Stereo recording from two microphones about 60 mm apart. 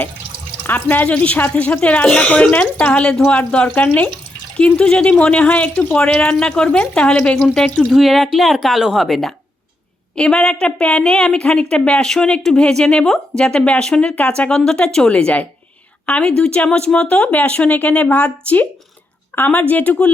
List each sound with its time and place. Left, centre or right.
0.7 s speech: left
2.0 s speech: centre
2.3 s speech: left
7.9 s speech: centre
10.2 s a woman's voice: centre